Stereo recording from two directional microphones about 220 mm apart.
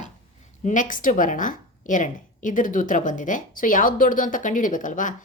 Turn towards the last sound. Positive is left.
turn(degrees=35)  # may be behind; listen again after turning